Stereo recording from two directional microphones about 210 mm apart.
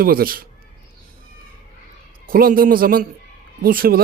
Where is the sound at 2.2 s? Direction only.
40° right (ahead or behind).